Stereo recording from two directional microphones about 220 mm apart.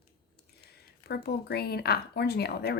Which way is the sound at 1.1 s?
45° left (ahead or behind).